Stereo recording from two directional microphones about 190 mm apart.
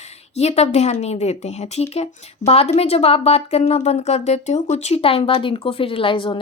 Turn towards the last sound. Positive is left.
turn(degrees=25)  # may be behind; listen again after turning